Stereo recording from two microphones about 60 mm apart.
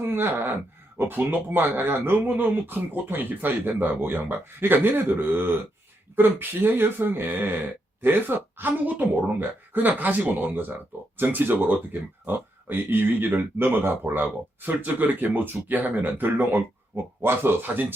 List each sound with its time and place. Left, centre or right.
0.0 s speech: right